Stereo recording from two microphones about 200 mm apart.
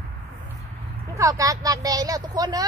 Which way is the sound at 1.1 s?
15° right (ahead or behind).